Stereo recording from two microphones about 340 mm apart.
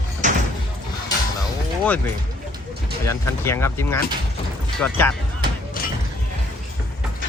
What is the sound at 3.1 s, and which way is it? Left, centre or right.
Speech, centre.